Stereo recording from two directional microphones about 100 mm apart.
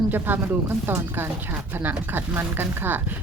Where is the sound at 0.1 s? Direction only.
20° right (ahead or behind).